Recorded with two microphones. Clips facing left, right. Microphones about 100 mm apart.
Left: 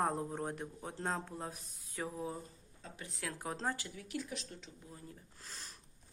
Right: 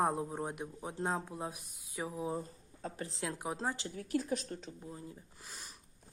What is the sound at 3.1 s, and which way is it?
Speech, 20° right (ahead or behind).